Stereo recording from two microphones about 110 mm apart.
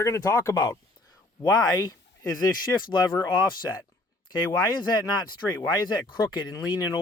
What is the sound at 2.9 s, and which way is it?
Speech, 40° left (ahead or behind).